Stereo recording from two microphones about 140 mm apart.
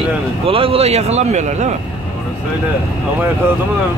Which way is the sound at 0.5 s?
45° right (ahead or behind).